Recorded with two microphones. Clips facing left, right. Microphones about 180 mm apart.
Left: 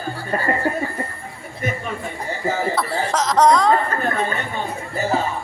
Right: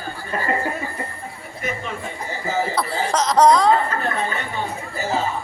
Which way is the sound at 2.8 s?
Centre (ahead or behind).